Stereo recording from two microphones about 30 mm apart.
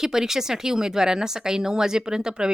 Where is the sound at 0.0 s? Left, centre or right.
Centre.